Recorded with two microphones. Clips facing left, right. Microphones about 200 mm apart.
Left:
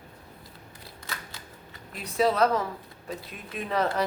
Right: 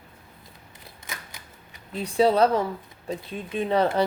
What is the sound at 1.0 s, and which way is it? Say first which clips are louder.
Typewriter: even; 15° right (ahead or behind).